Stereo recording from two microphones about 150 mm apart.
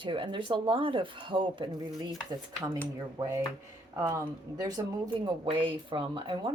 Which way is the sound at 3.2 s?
25° right (ahead or behind).